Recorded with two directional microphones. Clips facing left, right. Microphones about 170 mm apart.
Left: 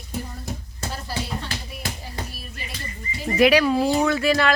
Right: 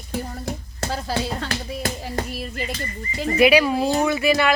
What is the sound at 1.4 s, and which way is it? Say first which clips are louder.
Speech: right 6 dB; 90° right.